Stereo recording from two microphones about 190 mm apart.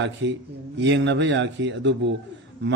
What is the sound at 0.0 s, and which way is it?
A man's voice, 70° right (ahead or behind).